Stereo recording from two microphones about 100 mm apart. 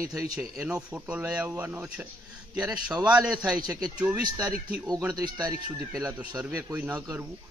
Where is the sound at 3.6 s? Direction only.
40° right (ahead or behind).